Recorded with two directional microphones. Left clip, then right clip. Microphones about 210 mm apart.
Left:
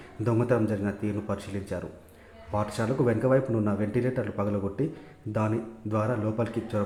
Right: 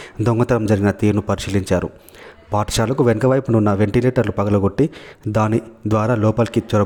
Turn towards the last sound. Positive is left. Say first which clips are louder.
# right 12 dB
turn(degrees=-50)  # may be behind; listen again after turning